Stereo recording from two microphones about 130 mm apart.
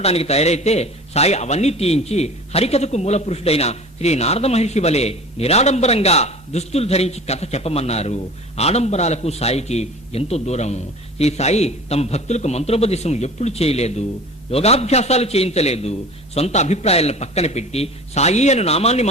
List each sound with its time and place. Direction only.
0.0 s a man's voice: 50° left (ahead or behind)